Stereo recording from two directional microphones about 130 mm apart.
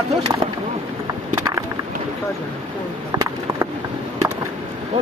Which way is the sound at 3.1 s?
30° right (ahead or behind).